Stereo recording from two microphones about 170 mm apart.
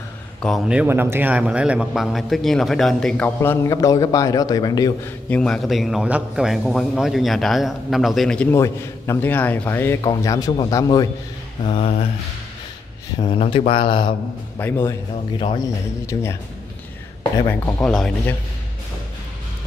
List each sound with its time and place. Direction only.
0.4 s a man's voice: centre (ahead or behind); by 5.1 s 20° left (ahead or behind)
5.3 s a man's voice: 5° left (ahead or behind); by 11.1 s 20° left (ahead or behind)
11.6 s speech: 35° left (ahead or behind)
13.2 s speech: 30° left (ahead or behind)
14.6 s speech: 15° left (ahead or behind)
16.1 s speech: 15° left (ahead or behind)
17.5 s speech: 10° left (ahead or behind)